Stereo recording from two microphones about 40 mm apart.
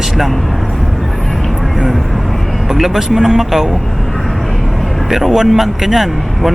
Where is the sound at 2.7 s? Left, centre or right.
Centre.